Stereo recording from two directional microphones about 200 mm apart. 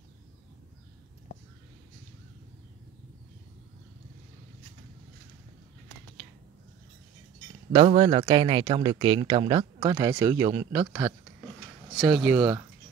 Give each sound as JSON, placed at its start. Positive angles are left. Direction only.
{"t": 7.7, "sound": "speech", "side_deg": -30}